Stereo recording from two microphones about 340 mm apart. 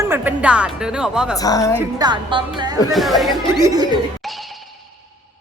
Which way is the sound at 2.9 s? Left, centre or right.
Centre.